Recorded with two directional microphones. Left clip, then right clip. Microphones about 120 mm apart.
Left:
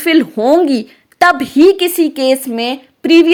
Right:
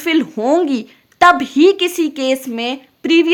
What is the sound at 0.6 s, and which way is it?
A woman's voice, 25° left (ahead or behind).